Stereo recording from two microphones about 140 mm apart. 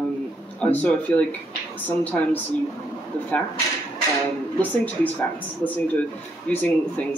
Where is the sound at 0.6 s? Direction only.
10° left (ahead or behind).